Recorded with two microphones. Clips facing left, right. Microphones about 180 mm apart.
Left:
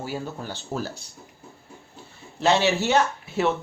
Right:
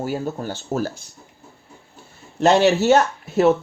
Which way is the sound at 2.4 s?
45° right (ahead or behind).